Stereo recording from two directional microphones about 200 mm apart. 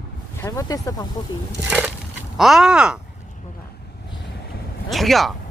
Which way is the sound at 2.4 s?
Centre (ahead or behind).